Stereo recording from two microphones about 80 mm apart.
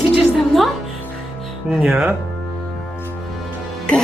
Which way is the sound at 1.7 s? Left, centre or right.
Centre.